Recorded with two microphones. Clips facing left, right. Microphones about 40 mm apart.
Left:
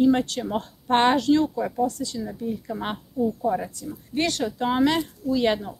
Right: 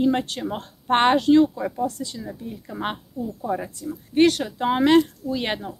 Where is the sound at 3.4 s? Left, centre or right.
Centre.